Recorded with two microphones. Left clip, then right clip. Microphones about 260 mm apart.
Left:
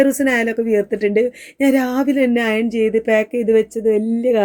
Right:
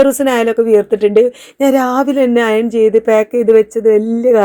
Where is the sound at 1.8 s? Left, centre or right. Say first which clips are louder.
Right 5 dB; centre.